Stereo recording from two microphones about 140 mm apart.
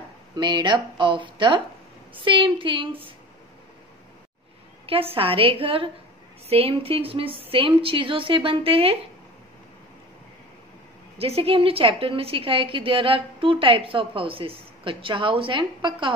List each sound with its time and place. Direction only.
0.4 s a woman's voice: 35° right (ahead or behind)
4.8 s a woman's voice: 40° right (ahead or behind)
11.1 s a woman's voice: 45° right (ahead or behind)